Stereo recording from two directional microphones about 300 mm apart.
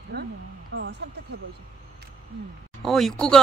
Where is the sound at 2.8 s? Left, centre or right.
Centre.